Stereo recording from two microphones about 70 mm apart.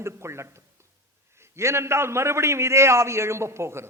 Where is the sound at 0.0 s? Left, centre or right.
Right.